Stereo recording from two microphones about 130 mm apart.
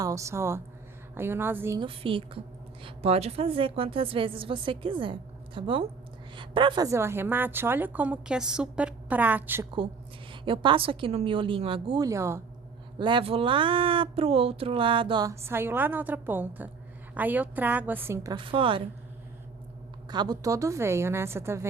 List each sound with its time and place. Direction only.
0.0 s a woman's voice: 25° right (ahead or behind)
1.8 s a woman's voice: 40° right (ahead or behind)
6.8 s a woman's voice: 20° right (ahead or behind)
10.4 s speech: 40° right (ahead or behind)
12.0 s a woman's voice: 25° right (ahead or behind)
13.0 s speech: 40° right (ahead or behind)
15.3 s a woman's voice: 20° right (ahead or behind)
18.3 s speech: 40° right (ahead or behind)
20.1 s a woman's voice: 35° right (ahead or behind)